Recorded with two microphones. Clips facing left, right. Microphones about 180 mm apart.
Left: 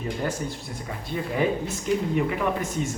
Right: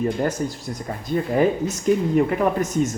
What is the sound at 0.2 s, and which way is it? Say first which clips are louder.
Speech: right 5 dB; 40° right (ahead or behind).